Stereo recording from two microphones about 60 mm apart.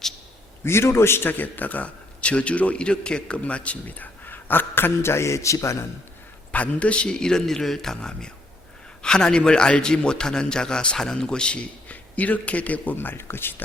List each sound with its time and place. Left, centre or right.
0.6 s a man's voice: left
6.5 s a man's voice: left